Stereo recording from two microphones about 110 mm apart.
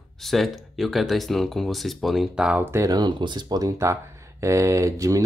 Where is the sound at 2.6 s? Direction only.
25° right (ahead or behind).